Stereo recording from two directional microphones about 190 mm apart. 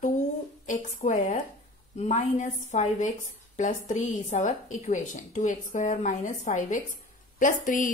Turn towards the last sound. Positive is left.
turn(degrees=45)  # may be behind; listen again after turning